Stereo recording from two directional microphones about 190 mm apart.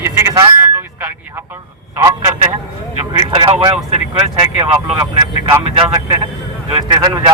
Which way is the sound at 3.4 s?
25° right (ahead or behind).